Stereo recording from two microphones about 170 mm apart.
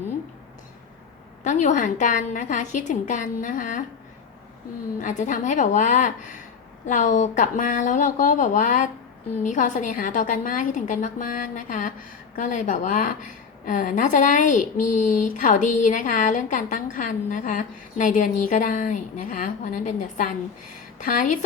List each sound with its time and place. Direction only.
1.5 s speech: 45° left (ahead or behind)
4.9 s speech: 45° left (ahead or behind)